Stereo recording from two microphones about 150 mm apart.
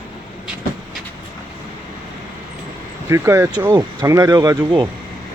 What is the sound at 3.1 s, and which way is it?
Speech, 20° right (ahead or behind).